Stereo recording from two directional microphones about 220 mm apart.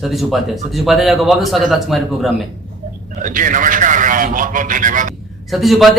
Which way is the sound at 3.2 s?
35° right (ahead or behind).